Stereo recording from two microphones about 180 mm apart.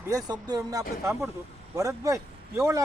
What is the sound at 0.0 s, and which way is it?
Speech, 20° right (ahead or behind).